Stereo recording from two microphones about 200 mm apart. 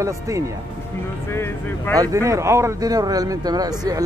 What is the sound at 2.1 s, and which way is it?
Speech, 15° right (ahead or behind).